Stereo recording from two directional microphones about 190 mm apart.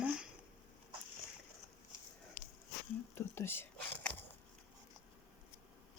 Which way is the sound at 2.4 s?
45° left (ahead or behind).